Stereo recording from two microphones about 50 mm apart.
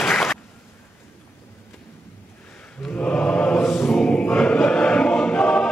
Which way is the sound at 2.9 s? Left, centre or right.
Left.